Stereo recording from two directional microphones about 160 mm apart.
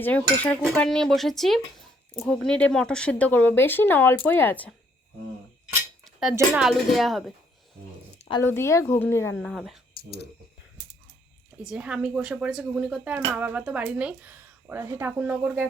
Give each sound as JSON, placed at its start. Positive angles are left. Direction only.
{"t": 0.0, "sound": "speech", "side_deg": 10}
{"t": 6.3, "sound": "speech", "side_deg": -5}
{"t": 8.3, "sound": "speech", "side_deg": 15}
{"t": 9.3, "sound": "speech", "side_deg": 0}
{"t": 11.6, "sound": "speech", "side_deg": -5}